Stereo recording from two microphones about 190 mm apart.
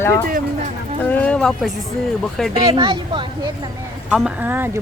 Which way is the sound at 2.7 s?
25° right (ahead or behind).